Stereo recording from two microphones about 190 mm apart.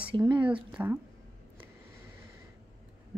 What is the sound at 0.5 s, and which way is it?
Speech, 10° right (ahead or behind).